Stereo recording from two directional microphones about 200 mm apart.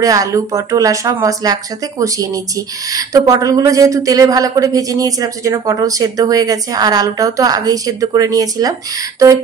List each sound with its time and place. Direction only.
0.0 s speech: 15° right (ahead or behind)